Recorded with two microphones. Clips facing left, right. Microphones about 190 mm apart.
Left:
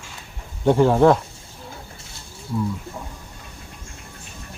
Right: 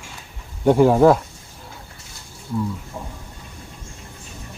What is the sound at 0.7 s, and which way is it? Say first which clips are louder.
Speech: right 2 dB; 10° right (ahead or behind).